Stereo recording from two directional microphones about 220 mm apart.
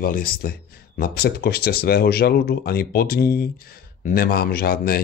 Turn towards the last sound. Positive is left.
turn(degrees=45)  # may be behind; listen again after turning